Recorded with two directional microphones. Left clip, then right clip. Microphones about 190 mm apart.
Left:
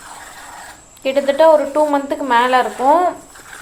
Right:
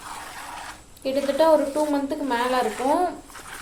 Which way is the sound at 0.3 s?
25° right (ahead or behind).